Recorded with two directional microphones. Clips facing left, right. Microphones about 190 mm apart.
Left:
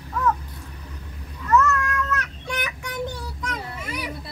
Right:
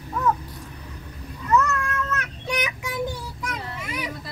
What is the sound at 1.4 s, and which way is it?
Meow, 20° right (ahead or behind).